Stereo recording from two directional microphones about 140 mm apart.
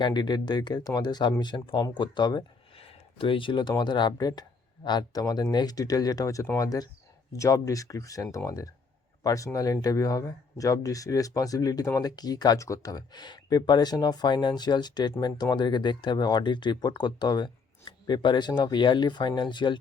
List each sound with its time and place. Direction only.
0.0 s speech: 30° left (ahead or behind)